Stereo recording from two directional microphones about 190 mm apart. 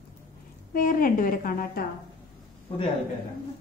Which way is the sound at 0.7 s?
45° left (ahead or behind).